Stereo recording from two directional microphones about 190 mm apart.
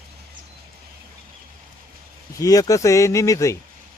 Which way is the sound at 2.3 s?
20° left (ahead or behind).